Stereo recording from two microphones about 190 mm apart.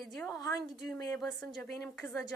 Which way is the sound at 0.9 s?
Centre (ahead or behind).